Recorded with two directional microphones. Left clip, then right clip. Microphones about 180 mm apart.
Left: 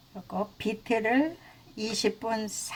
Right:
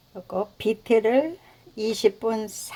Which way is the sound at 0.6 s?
45° right (ahead or behind).